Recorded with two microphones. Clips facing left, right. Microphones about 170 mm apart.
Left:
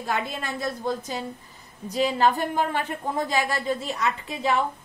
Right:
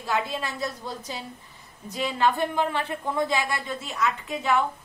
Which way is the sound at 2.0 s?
40° left (ahead or behind).